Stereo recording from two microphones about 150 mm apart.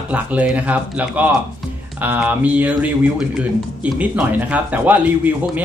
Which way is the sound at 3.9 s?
10° right (ahead or behind).